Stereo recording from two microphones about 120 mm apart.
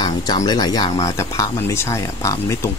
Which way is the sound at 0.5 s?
35° left (ahead or behind).